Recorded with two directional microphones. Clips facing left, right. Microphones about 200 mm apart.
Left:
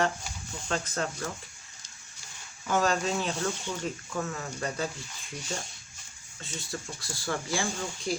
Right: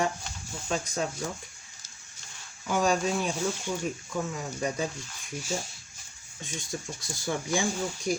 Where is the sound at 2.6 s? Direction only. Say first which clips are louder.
Right 1 dB; 10° right (ahead or behind).